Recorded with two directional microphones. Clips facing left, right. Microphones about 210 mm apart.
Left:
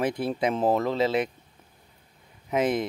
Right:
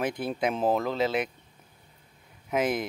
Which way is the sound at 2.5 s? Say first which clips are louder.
Left 2 dB; 5° right (ahead or behind).